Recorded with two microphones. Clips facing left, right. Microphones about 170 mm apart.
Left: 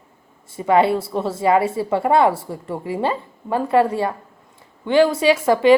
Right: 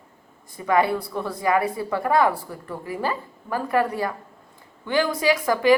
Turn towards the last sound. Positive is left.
turn(degrees=25)  # may be behind; listen again after turning